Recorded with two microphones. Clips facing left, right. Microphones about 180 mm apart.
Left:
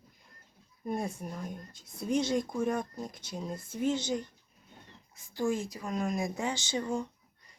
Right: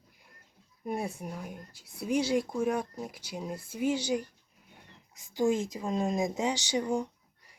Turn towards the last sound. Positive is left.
turn(degrees=-15)  # may be behind; listen again after turning